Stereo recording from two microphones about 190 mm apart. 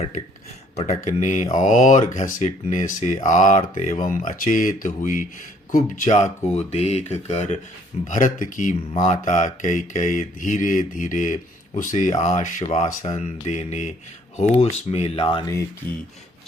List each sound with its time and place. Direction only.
0.8 s speech: 35° left (ahead or behind)
8.9 s speech: 25° left (ahead or behind)
9.2 s speech: 40° left (ahead or behind); by 15.6 s 20° left (ahead or behind)